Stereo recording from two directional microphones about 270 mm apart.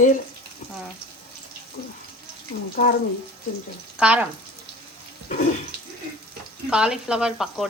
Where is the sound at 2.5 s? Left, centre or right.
Left.